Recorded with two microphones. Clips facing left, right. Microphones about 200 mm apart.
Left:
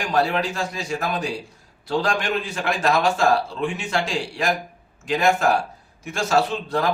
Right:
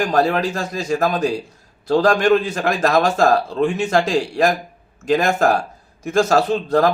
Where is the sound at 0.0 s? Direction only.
45° right (ahead or behind).